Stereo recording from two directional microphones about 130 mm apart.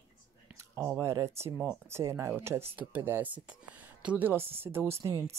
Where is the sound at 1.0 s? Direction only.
20° right (ahead or behind).